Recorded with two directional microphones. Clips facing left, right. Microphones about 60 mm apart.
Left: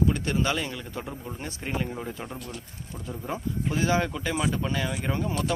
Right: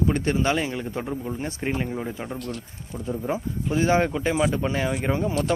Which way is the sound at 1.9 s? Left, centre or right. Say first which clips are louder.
Right 4 dB; centre.